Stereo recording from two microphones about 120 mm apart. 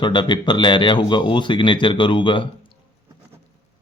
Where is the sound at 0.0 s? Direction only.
40° left (ahead or behind).